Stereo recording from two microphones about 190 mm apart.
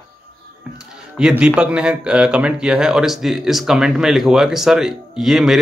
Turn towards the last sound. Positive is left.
turn(degrees=0)  # may be behind; listen again after turning